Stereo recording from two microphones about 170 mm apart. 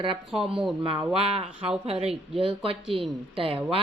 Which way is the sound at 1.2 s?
35° right (ahead or behind).